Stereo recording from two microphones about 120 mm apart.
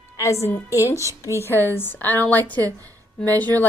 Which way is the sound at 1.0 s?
25° right (ahead or behind).